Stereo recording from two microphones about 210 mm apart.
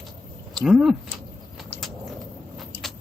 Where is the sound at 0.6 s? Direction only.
Centre (ahead or behind).